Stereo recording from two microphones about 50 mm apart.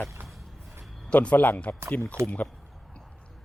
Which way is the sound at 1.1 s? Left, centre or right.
Left.